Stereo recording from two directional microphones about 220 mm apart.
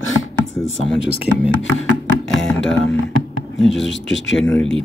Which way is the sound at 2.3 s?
Centre (ahead or behind).